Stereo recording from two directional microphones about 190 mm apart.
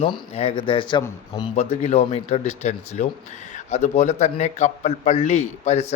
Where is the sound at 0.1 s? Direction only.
30° left (ahead or behind).